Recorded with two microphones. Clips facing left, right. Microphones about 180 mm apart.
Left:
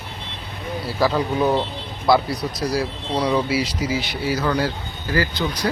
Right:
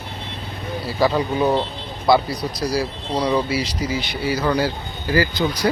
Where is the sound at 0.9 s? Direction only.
Centre (ahead or behind).